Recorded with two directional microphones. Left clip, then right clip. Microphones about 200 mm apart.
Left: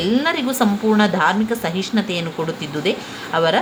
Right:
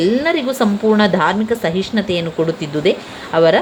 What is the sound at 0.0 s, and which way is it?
A woman's voice, 15° right (ahead or behind).